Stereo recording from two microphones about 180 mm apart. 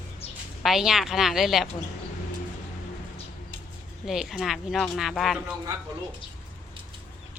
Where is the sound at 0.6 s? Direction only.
Centre (ahead or behind).